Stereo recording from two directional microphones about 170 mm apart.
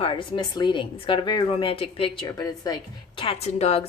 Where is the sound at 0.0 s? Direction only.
30° left (ahead or behind).